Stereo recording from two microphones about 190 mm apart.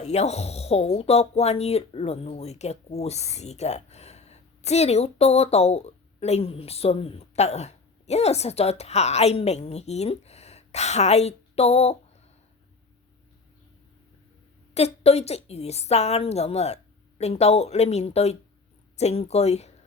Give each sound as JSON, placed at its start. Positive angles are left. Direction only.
{"t": 0.0, "sound": "speech", "side_deg": 35}
{"t": 14.7, "sound": "speech", "side_deg": 35}